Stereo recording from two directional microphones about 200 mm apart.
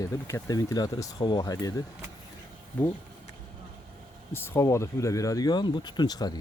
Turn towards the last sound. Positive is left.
turn(degrees=20)  # may be behind; listen again after turning